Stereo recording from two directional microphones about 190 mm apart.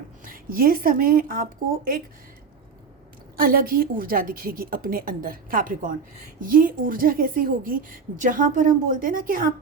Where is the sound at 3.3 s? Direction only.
50° right (ahead or behind).